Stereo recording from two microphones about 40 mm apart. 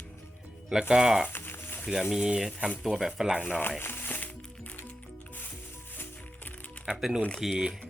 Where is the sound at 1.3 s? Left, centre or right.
Left.